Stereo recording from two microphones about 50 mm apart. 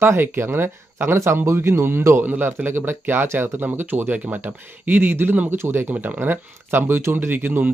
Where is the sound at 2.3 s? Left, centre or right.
Right.